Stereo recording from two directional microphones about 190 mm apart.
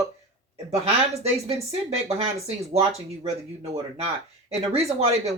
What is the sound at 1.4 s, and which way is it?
Speech, 35° right (ahead or behind).